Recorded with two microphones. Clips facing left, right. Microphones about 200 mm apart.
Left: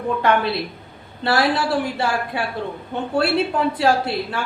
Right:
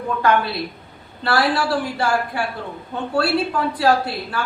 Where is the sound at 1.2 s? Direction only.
20° left (ahead or behind).